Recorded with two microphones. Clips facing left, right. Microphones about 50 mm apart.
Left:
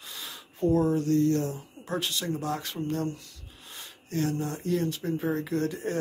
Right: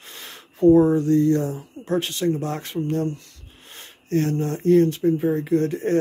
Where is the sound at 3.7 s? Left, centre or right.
Right.